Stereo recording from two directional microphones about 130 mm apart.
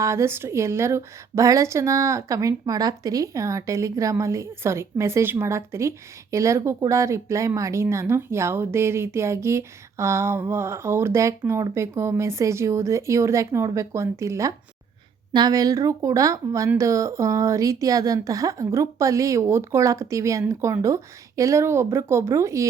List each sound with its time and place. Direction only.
0.0 s a woman's voice: 20° right (ahead or behind)